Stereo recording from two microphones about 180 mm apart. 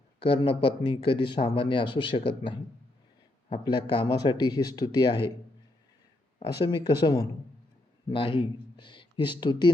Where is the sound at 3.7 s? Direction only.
25° left (ahead or behind).